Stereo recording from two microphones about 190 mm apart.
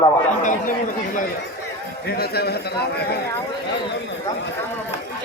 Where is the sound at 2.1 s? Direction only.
55° left (ahead or behind).